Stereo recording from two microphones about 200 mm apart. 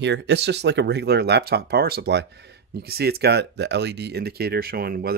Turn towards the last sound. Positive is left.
turn(degrees=-50)  # may be behind; listen again after turning